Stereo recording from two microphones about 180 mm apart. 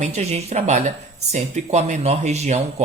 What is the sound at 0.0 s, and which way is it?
Speech, 40° right (ahead or behind).